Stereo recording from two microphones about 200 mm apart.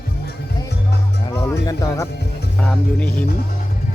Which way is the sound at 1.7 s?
15° left (ahead or behind).